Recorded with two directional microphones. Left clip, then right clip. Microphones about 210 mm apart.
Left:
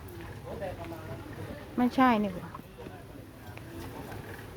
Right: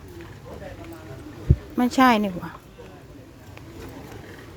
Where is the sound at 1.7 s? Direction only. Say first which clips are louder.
Right 7 dB; 20° right (ahead or behind).